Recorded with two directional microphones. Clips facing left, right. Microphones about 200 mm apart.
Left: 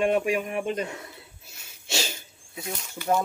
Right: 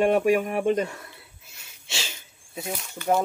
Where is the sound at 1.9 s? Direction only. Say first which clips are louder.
Left 6 dB; 45° left (ahead or behind).